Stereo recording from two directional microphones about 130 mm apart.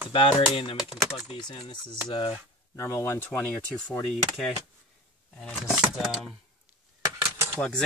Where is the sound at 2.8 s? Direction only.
20° left (ahead or behind).